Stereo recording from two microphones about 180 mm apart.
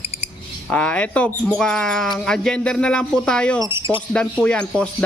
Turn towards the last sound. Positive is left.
turn(degrees=5)  # may be behind; listen again after turning